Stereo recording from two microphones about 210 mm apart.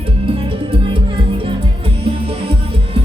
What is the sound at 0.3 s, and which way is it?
Music, 25° right (ahead or behind).